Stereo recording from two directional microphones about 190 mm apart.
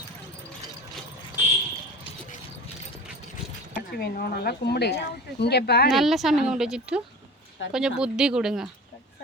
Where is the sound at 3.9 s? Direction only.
55° left (ahead or behind).